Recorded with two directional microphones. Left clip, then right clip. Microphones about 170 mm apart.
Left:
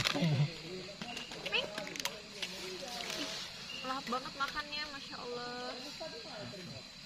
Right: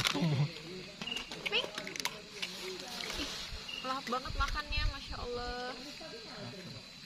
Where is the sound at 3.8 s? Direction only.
45° right (ahead or behind).